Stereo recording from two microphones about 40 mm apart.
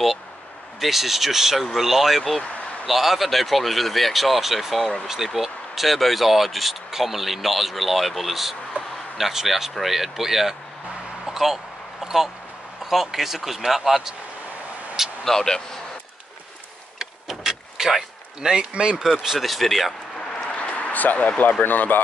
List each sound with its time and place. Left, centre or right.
0.7 s speech: centre
11.2 s a sound: centre
12.8 s speech: centre
15.2 s speech: centre
17.0 s vehicle: centre
18.7 s speech: right
19.0 s speech: centre
19.4 s speech: centre
20.5 s a sound: left
21.6 s speech: left